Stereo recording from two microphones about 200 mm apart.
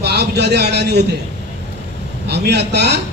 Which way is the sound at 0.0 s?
55° right (ahead or behind).